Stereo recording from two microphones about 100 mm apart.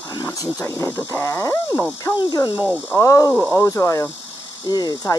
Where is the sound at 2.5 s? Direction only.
10° right (ahead or behind).